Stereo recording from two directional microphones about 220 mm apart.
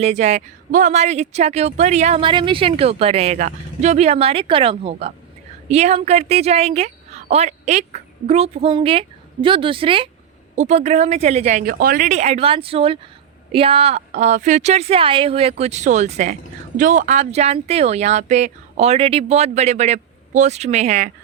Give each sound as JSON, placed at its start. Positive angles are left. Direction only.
{"t": 0.0, "sound": "a woman's voice", "side_deg": -30}